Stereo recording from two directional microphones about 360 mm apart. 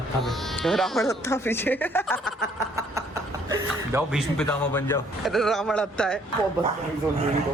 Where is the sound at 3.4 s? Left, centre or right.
Centre.